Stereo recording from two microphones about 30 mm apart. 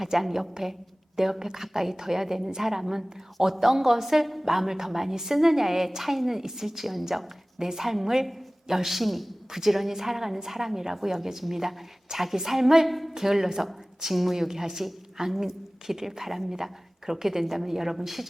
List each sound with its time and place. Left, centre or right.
0.0 s a woman's voice: centre
13.1 s a woman's voice: centre